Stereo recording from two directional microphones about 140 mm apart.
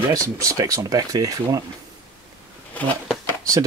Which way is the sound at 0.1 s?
25° right (ahead or behind).